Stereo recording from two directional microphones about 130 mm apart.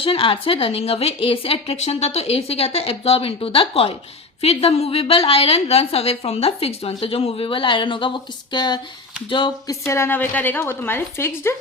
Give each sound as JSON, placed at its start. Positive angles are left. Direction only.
{"t": 0.0, "sound": "a woman's voice", "side_deg": 45}
{"t": 9.6, "sound": "a woman's voice", "side_deg": 20}